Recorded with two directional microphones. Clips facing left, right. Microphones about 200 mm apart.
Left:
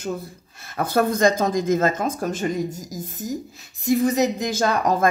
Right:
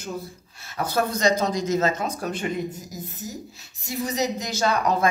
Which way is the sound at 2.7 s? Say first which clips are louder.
Left 4 dB; 90° left.